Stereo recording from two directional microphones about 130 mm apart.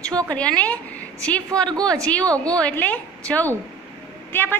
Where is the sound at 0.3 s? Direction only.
10° left (ahead or behind).